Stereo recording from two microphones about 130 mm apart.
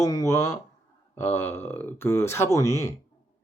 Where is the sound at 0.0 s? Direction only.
25° left (ahead or behind).